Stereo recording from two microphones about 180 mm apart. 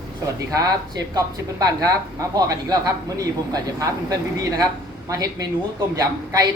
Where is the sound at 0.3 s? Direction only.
20° right (ahead or behind).